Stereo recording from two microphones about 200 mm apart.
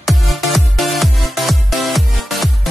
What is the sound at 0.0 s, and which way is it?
Music, centre (ahead or behind).